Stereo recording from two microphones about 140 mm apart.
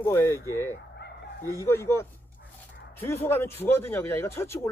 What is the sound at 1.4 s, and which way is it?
Speech, 20° left (ahead or behind).